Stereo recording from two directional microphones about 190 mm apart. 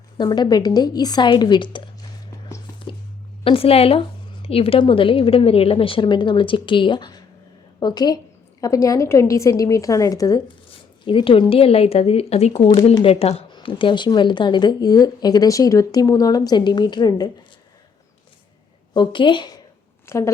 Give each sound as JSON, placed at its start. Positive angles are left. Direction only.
{"t": 0.2, "sound": "speech", "side_deg": 20}
{"t": 3.4, "sound": "speech", "side_deg": 30}
{"t": 18.9, "sound": "speech", "side_deg": 25}